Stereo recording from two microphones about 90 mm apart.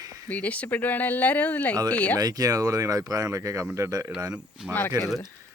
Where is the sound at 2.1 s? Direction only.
45° right (ahead or behind).